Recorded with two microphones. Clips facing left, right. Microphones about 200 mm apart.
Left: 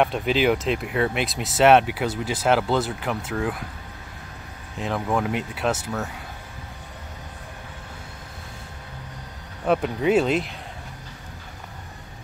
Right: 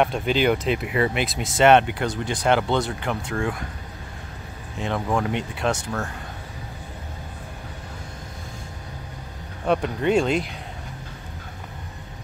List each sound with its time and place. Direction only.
0.0 s speech: centre (ahead or behind)
4.7 s speech: centre (ahead or behind)
9.7 s speech: 5° left (ahead or behind)